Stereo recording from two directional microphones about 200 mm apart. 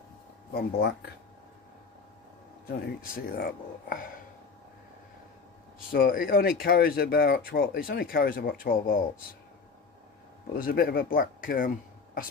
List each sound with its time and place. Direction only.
0.5 s speech: 50° left (ahead or behind)
2.6 s speech: 50° left (ahead or behind)
5.9 s speech: 45° left (ahead or behind)
10.6 s speech: 50° left (ahead or behind)